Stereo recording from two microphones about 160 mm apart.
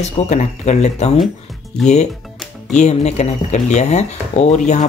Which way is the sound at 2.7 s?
45° left (ahead or behind).